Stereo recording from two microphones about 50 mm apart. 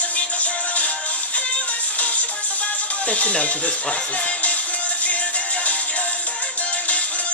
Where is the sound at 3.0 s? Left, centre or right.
Left.